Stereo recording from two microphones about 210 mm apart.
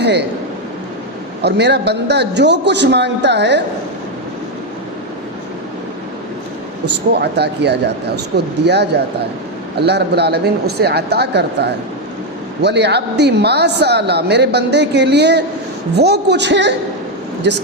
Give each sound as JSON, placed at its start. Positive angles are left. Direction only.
{"t": 0.0, "sound": "speech", "side_deg": -55}
{"t": 1.4, "sound": "a woman's voice", "side_deg": -50}
{"t": 7.1, "sound": "a woman's voice", "side_deg": -50}